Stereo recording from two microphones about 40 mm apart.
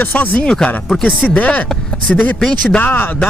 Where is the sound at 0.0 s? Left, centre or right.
Left.